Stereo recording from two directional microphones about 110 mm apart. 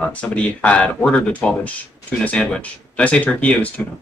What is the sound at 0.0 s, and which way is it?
Speech, 10° left (ahead or behind).